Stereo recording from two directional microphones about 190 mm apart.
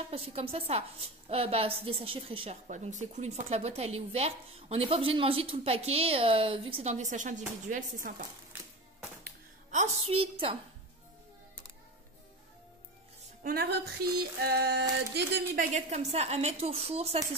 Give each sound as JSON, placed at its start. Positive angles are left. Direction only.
{"t": 0.1, "sound": "a woman's voice", "side_deg": -30}
{"t": 2.7, "sound": "a woman's voice", "side_deg": -40}
{"t": 9.7, "sound": "a woman's voice", "side_deg": -35}
{"t": 13.4, "sound": "a sound", "side_deg": -55}
{"t": 15.7, "sound": "a woman's voice", "side_deg": -35}